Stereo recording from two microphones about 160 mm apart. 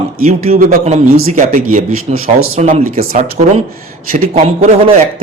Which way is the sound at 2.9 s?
65° right (ahead or behind).